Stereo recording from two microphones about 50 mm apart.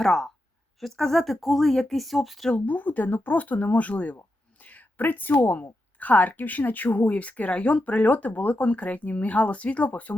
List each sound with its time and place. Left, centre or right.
0.0 s speech: centre
2.5 s a woman's voice: left
4.6 s a sound: left
6.0 s a woman's voice: left